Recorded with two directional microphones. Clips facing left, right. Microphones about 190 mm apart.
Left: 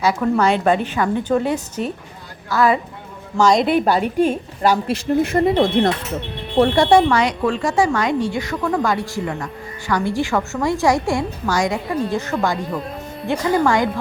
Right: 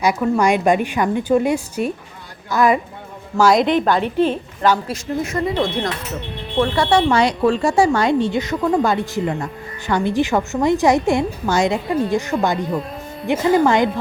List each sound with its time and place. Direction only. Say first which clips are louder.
0.0 s a woman's voice: even; 15° right (ahead or behind)
3.3 s a woman's voice: right 1 dB; 5° right (ahead or behind)
3.7 s a woman's voice: even; 10° left (ahead or behind)
5.4 s speech: left 4 dB; 55° left (ahead or behind)
6.6 s speech: left 3 dB; 40° left (ahead or behind)
7.1 s a woman's voice: right 2 dB; 30° right (ahead or behind)
12.5 s a woman's voice: right 3 dB; centre (ahead or behind)
13.2 s a woman's voice: right 3 dB; 20° right (ahead or behind)